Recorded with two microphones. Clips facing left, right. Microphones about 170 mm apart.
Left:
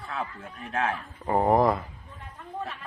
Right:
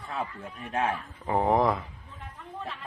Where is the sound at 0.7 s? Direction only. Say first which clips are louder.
Even; 15° right (ahead or behind).